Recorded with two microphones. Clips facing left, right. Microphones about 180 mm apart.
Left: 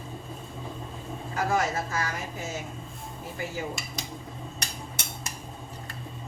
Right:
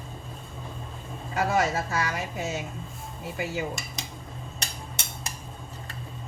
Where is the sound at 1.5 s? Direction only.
70° right (ahead or behind).